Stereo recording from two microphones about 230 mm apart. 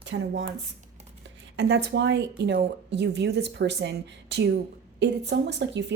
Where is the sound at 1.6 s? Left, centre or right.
Right.